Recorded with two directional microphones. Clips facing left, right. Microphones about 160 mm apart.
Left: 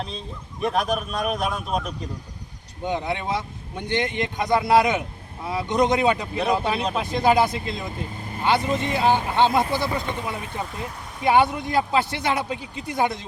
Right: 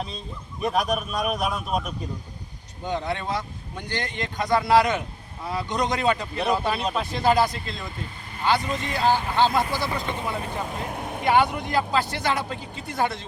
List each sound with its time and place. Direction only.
0.6 s a man's voice: centre (ahead or behind)
2.8 s speech: 20° left (ahead or behind)
10.9 s vehicle: 55° right (ahead or behind)
11.3 s speech: 20° left (ahead or behind)